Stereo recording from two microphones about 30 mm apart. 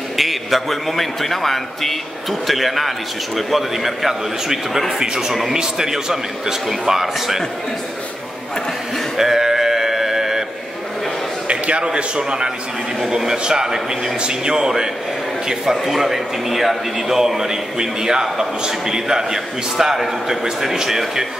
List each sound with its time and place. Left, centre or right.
0.2 s a man's voice: centre
5.0 s a man's voice: right
6.7 s a man's voice: centre
9.1 s sheep: centre
11.4 s a man's voice: right
13.4 s a man's voice: right
15.7 s a man's voice: centre